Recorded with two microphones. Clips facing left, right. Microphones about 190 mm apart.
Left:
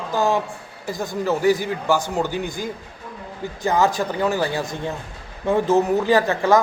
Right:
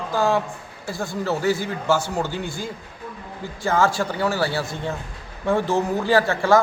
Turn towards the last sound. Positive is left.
turn(degrees=15)  # may be behind; listen again after turning